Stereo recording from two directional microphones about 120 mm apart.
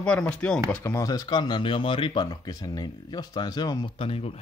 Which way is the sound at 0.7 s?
20° left (ahead or behind).